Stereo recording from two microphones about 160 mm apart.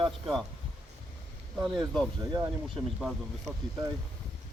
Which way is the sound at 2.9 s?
Centre (ahead or behind).